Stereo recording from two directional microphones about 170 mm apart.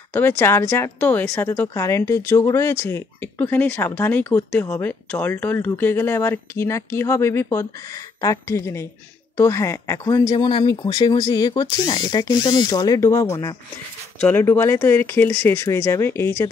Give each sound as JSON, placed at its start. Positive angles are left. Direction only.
{"t": 0.1, "sound": "speech", "side_deg": 15}